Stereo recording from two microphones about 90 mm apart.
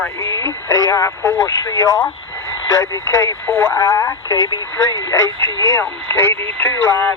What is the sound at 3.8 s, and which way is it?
Speech, 35° left (ahead or behind).